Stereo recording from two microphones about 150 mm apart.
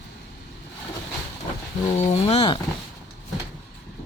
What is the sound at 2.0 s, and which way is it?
Speech, 50° left (ahead or behind).